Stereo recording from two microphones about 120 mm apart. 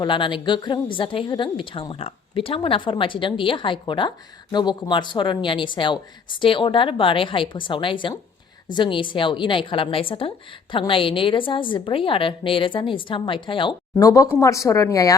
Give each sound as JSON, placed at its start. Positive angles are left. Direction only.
{"t": 0.0, "sound": "a woman's voice", "side_deg": 40}
{"t": 14.0, "sound": "speech", "side_deg": 25}